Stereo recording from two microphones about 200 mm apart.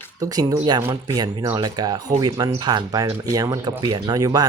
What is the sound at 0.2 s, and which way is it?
Speech, 15° right (ahead or behind).